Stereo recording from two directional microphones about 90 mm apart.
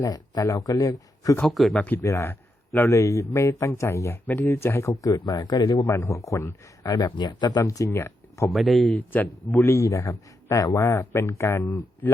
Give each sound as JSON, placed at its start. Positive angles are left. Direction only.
{"t": 0.0, "sound": "speech", "side_deg": 40}
{"t": 1.5, "sound": "speech", "side_deg": 0}
{"t": 2.0, "sound": "speech", "side_deg": 30}
{"t": 5.1, "sound": "speech", "side_deg": 50}
{"t": 5.9, "sound": "speech", "side_deg": 35}
{"t": 6.9, "sound": "speech", "side_deg": 55}
{"t": 7.9, "sound": "speech", "side_deg": 30}
{"t": 8.4, "sound": "speech", "side_deg": 0}
{"t": 8.9, "sound": "speech", "side_deg": 20}
{"t": 9.6, "sound": "speech", "side_deg": 30}